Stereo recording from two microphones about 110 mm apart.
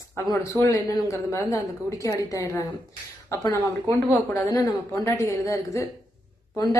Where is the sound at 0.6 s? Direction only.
30° left (ahead or behind).